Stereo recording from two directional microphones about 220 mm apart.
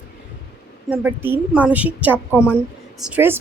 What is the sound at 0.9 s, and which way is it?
A woman's voice, 10° right (ahead or behind).